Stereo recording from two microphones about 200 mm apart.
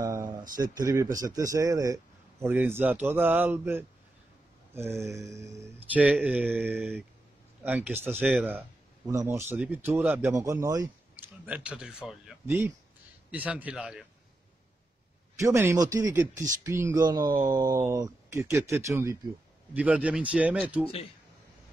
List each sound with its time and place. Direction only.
0.0 s a man's voice: 15° right (ahead or behind)
6.7 s speech: 5° left (ahead or behind)
7.6 s a man's voice: 10° right (ahead or behind)
15.3 s a man's voice: 15° right (ahead or behind)
20.8 s a man's voice: 30° left (ahead or behind)